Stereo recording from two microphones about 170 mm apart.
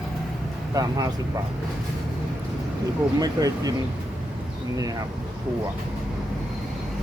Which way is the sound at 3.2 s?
20° right (ahead or behind).